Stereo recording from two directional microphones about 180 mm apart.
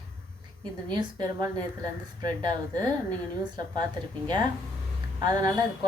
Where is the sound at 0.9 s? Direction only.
25° right (ahead or behind).